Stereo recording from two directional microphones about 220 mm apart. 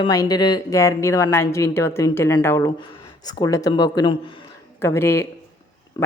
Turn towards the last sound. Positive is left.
turn(degrees=15)  # may be behind; listen again after turning